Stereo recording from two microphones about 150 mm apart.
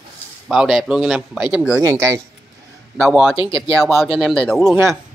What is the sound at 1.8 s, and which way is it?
Speech, 20° right (ahead or behind).